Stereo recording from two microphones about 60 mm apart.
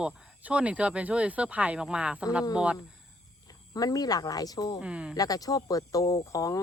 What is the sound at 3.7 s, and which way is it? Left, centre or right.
Speech, left.